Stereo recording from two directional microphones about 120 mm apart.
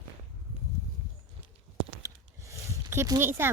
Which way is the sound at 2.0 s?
25° right (ahead or behind).